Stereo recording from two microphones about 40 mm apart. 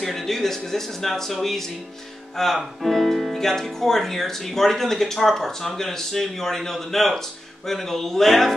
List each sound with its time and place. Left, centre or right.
0.0 s speech: centre